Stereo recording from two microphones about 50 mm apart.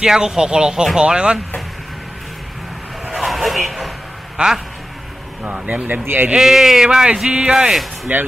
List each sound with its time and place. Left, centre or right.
0.0 s speech: centre
3.1 s a sound: centre
4.4 s speech: right
6.0 s a man's voice: right
6.3 s speech: centre
7.7 s speech: centre